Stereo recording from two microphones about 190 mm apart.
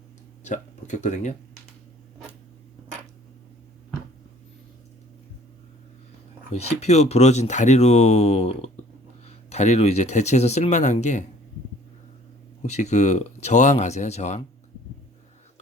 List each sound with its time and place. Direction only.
0.4 s speech: 40° left (ahead or behind)
6.5 s speech: 35° left (ahead or behind)
12.6 s speech: 35° left (ahead or behind)